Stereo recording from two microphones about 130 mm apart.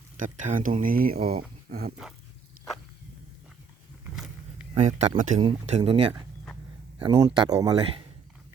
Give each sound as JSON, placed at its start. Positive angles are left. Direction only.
{"t": 0.2, "sound": "speech", "side_deg": -75}
{"t": 0.8, "sound": "speech", "side_deg": -90}
{"t": 1.1, "sound": "speech", "side_deg": -55}
{"t": 2.6, "sound": "walk", "side_deg": -90}
{"t": 4.1, "sound": "a sound", "side_deg": -5}
{"t": 4.8, "sound": "speech", "side_deg": -70}
{"t": 5.4, "sound": "speech", "side_deg": -45}
{"t": 7.0, "sound": "speech", "side_deg": -35}